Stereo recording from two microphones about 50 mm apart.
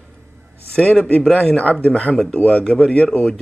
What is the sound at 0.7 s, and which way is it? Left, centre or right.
Speech, left.